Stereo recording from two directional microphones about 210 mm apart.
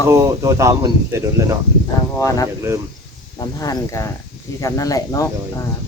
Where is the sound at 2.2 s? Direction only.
15° left (ahead or behind).